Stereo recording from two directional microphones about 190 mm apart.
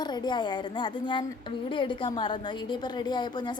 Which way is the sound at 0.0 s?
20° left (ahead or behind).